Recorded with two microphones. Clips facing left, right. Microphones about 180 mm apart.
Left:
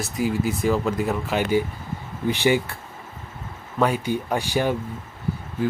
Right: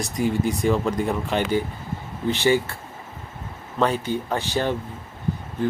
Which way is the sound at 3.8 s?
10° left (ahead or behind).